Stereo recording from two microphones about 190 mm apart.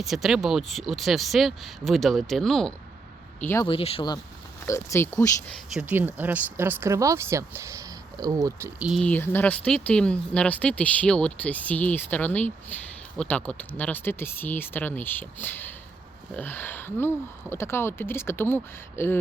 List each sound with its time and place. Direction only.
0.0 s speech: centre (ahead or behind)
3.7 s speech: 30° left (ahead or behind)
4.6 s speech: 15° left (ahead or behind)
5.5 s speech: centre (ahead or behind); by 8.7 s 20° right (ahead or behind)
8.8 s speech: centre (ahead or behind)